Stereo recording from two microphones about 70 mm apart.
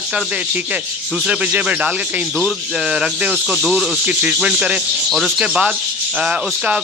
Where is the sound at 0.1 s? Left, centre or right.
Centre.